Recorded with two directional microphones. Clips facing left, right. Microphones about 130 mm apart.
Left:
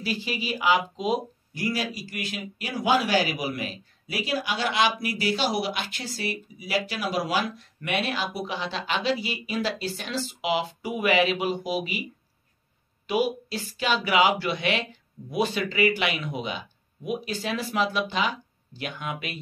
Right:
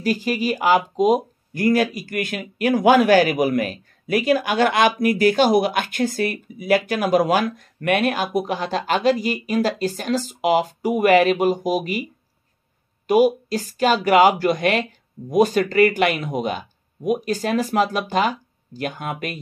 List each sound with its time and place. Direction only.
0.0 s a man's voice: 45° right (ahead or behind)